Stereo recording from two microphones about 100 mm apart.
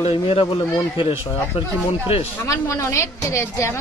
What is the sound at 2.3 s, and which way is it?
A woman's voice, 25° left (ahead or behind).